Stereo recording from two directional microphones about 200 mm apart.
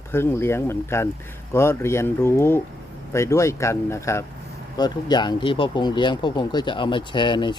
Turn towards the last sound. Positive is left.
turn(degrees=25)  # may be behind; listen again after turning